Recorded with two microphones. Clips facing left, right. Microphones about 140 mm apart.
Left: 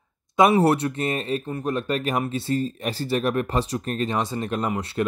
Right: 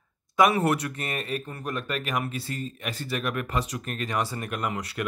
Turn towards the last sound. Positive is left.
turn(degrees=25)  # may be behind; listen again after turning